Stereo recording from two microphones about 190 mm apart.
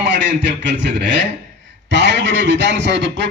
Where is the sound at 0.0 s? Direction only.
65° right (ahead or behind).